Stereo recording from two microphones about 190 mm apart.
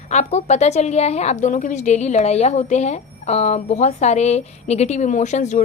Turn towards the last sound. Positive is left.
turn(degrees=40)  # may be behind; listen again after turning